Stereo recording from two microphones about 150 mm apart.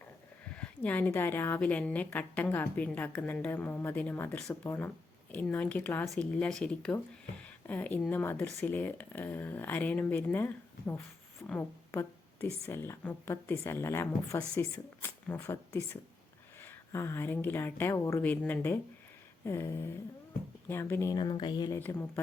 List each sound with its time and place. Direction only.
0.5 s a woman's voice: 10° left (ahead or behind)
7.4 s a sound: 10° left (ahead or behind)
8.1 s a woman's voice: 15° left (ahead or behind); by 21.7 s 30° left (ahead or behind)
21.7 s a woman's voice: 15° left (ahead or behind)